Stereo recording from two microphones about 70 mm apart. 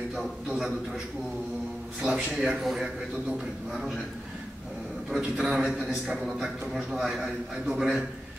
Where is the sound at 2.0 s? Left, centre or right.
Centre.